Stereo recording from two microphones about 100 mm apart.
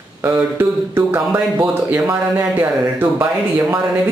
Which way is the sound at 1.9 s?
15° right (ahead or behind).